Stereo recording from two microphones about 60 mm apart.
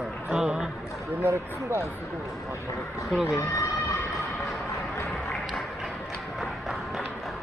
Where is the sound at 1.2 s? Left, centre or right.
Right.